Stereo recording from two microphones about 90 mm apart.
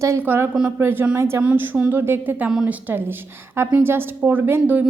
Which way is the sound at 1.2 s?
30° right (ahead or behind).